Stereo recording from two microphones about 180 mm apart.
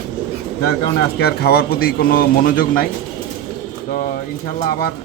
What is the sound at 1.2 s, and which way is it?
A man's voice, 60° left (ahead or behind).